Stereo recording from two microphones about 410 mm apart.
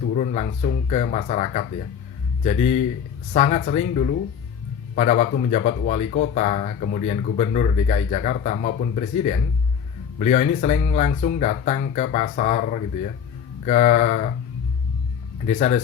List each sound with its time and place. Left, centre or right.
0.2 s speech: centre
15.4 s speech: centre